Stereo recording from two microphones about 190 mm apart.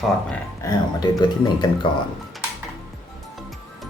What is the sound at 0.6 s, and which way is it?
Speech, 20° left (ahead or behind).